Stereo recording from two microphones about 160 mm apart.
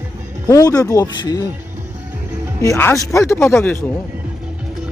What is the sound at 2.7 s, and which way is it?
Speech, 15° left (ahead or behind).